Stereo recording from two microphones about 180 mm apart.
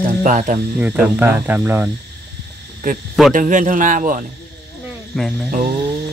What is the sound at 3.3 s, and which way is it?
Speech, 45° right (ahead or behind).